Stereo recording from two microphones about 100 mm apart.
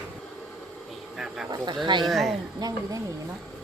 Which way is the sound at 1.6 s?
50° right (ahead or behind).